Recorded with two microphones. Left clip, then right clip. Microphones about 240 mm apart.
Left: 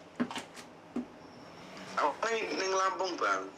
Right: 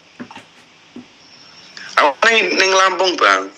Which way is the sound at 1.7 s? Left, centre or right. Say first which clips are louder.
Right 17 dB; right.